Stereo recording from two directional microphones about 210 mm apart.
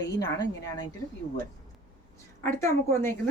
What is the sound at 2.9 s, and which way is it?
Speech, 10° left (ahead or behind).